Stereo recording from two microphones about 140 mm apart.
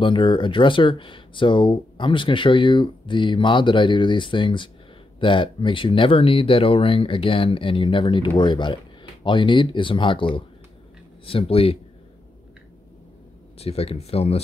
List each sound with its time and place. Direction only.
0.0 s speech: 35° left (ahead or behind)
13.6 s speech: 45° left (ahead or behind)